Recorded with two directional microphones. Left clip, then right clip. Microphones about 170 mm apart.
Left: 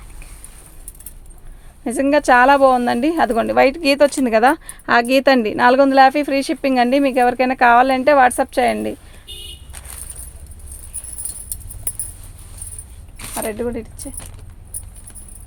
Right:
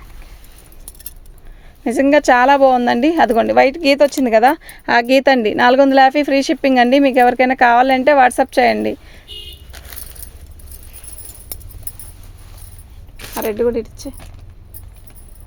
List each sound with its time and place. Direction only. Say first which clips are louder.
1.8 s speech: right 4 dB; 35° right (ahead or behind)
9.7 s keys jangling: right 2 dB; 55° right (ahead or behind)
13.1 s keys jangling: right 3 dB; 40° right (ahead or behind)
13.5 s speech: right 10 dB; 60° right (ahead or behind)